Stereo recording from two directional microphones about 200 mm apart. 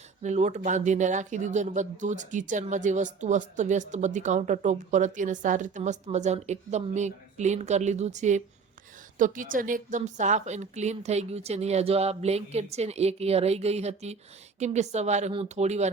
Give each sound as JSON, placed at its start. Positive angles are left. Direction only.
{"t": 0.2, "sound": "speech", "side_deg": -35}